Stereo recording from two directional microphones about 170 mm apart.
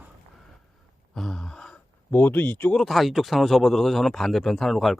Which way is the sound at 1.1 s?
Centre (ahead or behind).